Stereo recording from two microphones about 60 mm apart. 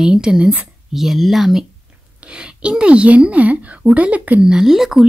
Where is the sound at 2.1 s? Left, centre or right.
Centre.